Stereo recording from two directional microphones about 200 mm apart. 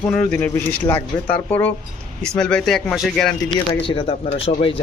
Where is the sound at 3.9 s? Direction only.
25° left (ahead or behind).